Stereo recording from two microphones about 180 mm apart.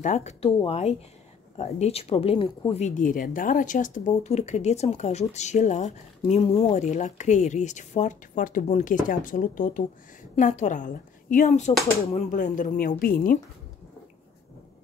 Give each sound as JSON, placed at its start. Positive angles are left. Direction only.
{"t": 0.0, "sound": "speech", "side_deg": 40}
{"t": 2.8, "sound": "speech", "side_deg": 45}